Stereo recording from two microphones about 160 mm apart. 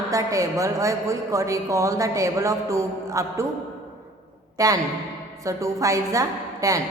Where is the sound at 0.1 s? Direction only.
20° right (ahead or behind).